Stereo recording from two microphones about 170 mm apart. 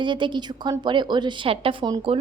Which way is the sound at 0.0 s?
30° right (ahead or behind).